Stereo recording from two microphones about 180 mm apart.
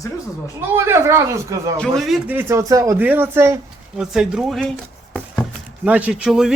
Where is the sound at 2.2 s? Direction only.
15° right (ahead or behind).